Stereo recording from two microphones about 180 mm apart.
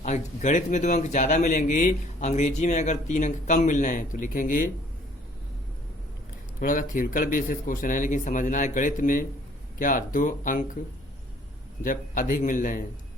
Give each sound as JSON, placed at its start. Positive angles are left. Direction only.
{"t": 0.0, "sound": "speech", "side_deg": 40}
{"t": 6.6, "sound": "speech", "side_deg": 50}
{"t": 11.8, "sound": "speech", "side_deg": 45}